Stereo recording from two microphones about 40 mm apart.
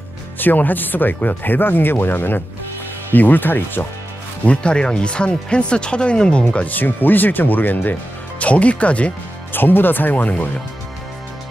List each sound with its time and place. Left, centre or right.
0.4 s speech: left
4.5 s speech: left
6.5 s speech: left
8.4 s speech: left
9.5 s speech: left